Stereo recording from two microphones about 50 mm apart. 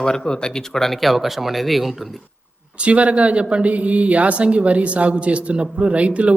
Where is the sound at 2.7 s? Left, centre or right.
Right.